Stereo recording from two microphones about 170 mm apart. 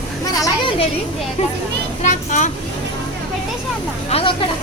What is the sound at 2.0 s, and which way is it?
Speech, 45° left (ahead or behind).